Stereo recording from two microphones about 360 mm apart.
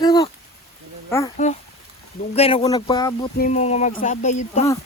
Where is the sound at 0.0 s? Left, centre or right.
Centre.